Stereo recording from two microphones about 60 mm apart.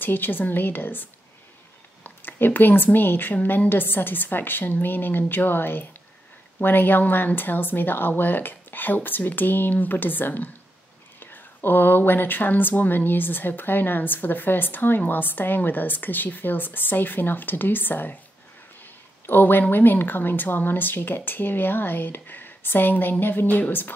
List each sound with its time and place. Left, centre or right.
0.0 s speech: left
2.0 s speech: left
19.2 s speech: left